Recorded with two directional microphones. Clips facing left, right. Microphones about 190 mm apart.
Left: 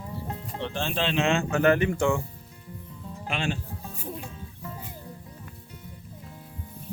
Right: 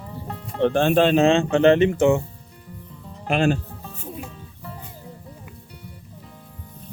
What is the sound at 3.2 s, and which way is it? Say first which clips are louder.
Speech: right 10 dB; 45° right (ahead or behind).